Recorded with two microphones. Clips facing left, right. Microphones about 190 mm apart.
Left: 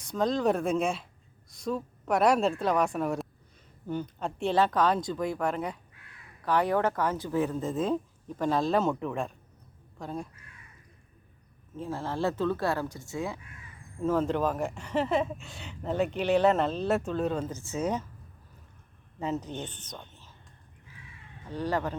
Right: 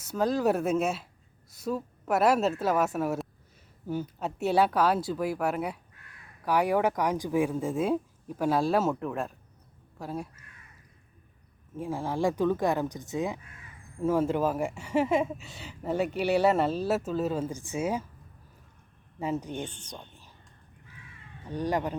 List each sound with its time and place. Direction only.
0.0 s a woman's voice: 5° right (ahead or behind)
11.8 s speech: 15° right (ahead or behind)
19.2 s speech: 10° right (ahead or behind)
21.5 s speech: 15° right (ahead or behind)